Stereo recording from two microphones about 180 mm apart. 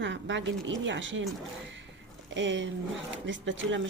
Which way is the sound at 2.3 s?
90° right.